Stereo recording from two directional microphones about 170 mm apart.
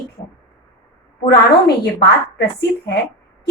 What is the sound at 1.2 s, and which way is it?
A woman's voice, 70° left (ahead or behind).